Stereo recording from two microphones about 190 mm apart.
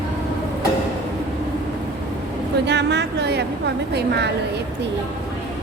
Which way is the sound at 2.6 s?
65° right (ahead or behind).